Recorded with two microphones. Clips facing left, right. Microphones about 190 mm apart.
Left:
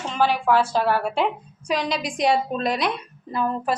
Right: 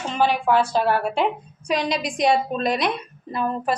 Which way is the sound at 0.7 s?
20° right (ahead or behind).